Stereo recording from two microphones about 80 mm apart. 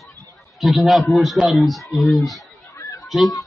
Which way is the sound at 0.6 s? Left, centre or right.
Centre.